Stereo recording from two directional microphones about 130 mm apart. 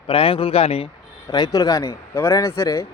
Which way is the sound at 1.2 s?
30° left (ahead or behind).